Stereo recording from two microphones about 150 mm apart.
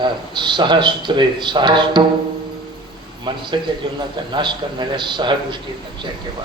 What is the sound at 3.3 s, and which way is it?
A man's voice, 30° right (ahead or behind).